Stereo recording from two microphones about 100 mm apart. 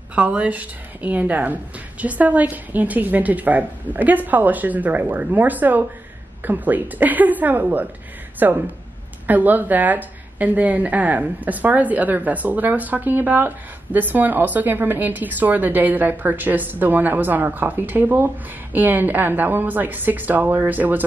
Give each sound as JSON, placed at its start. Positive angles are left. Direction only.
{"t": 0.1, "sound": "a woman's voice", "side_deg": -15}